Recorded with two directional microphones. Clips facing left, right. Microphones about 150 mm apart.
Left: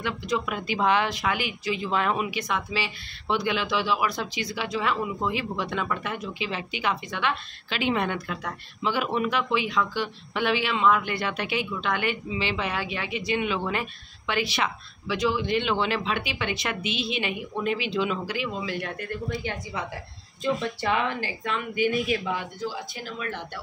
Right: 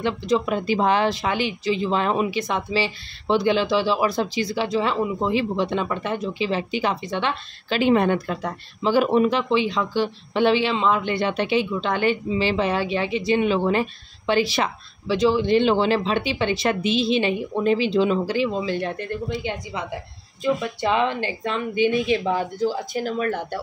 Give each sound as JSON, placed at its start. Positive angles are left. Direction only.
{"t": 0.0, "sound": "speech", "side_deg": -30}
{"t": 20.9, "sound": "speech", "side_deg": -25}